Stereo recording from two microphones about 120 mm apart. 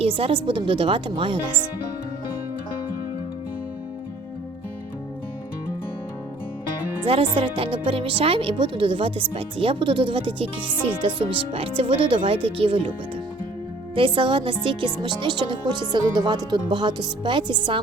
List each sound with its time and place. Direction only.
0.0 s speech: 50° right (ahead or behind)
7.0 s speech: 45° right (ahead or behind)
13.9 s speech: 45° right (ahead or behind)